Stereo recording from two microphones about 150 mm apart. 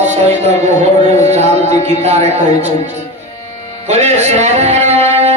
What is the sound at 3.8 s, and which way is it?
Music, 45° right (ahead or behind).